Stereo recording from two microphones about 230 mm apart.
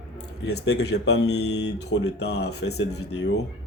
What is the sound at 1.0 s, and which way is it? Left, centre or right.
A man's voice, left.